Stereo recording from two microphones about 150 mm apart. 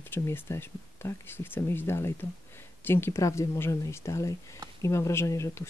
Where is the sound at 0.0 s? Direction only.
15° left (ahead or behind).